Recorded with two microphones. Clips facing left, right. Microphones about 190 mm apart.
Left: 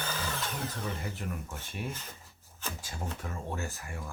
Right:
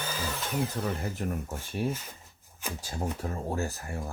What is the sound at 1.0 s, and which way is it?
Speech, 40° right (ahead or behind).